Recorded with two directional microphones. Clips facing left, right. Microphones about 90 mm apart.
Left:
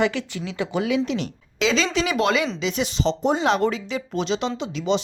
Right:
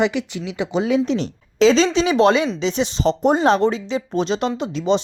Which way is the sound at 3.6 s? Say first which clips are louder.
Right 4 dB; 30° right (ahead or behind).